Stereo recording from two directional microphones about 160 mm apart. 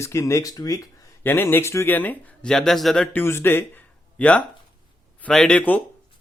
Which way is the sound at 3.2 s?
15° left (ahead or behind).